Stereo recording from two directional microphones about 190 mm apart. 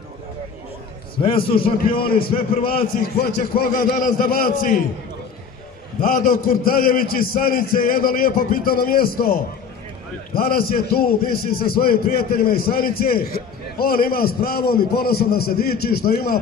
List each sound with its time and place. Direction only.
1.4 s a man's voice: 50° left (ahead or behind)
2.6 s a man's voice: 30° left (ahead or behind)
3.2 s a man's voice: 50° left (ahead or behind)
5.9 s a man's voice: 45° left (ahead or behind)